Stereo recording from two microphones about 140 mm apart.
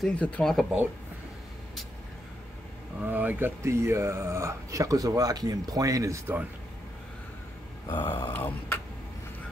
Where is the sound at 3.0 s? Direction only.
10° right (ahead or behind).